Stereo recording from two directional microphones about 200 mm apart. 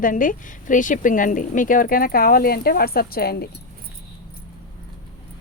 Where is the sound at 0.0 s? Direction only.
40° left (ahead or behind).